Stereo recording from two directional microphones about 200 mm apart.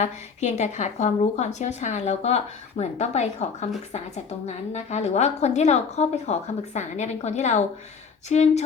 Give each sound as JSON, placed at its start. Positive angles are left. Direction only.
{"t": 0.0, "sound": "a woman's voice", "side_deg": 35}